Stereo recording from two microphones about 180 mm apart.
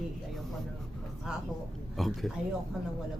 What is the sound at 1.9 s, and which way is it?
Speech, centre (ahead or behind).